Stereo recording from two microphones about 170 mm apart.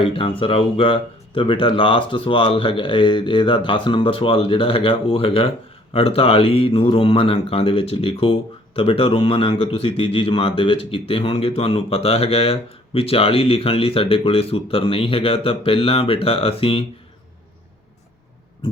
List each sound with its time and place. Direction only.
0.0 s speech: 30° left (ahead or behind)